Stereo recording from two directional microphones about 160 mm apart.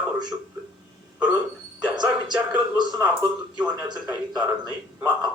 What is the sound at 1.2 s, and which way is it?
A man's voice, 10° right (ahead or behind).